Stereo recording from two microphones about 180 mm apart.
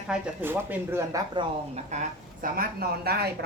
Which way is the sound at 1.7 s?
40° right (ahead or behind).